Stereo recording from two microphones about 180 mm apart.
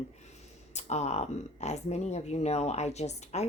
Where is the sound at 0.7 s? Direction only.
40° left (ahead or behind).